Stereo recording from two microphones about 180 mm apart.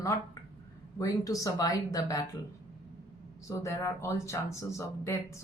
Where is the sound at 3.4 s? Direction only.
15° left (ahead or behind).